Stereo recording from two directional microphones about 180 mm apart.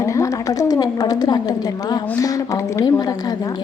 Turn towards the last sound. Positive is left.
turn(degrees=20)  # may be behind; listen again after turning